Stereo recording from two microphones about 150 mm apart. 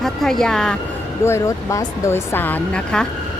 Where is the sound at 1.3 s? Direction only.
20° left (ahead or behind).